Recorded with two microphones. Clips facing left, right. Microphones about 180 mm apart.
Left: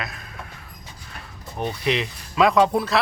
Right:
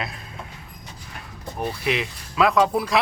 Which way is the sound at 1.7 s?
5° right (ahead or behind).